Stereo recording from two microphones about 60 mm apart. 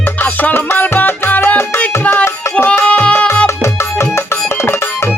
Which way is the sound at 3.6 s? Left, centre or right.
Left.